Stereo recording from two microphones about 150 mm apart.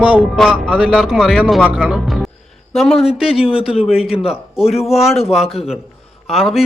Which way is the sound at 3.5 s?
40° left (ahead or behind).